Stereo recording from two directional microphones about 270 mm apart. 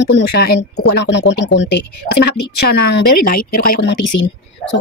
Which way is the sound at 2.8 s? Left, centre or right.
Left.